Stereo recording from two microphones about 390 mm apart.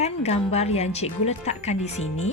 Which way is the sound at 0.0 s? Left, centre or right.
Centre.